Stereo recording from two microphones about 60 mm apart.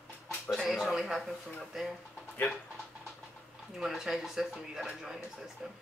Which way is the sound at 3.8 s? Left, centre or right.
Centre.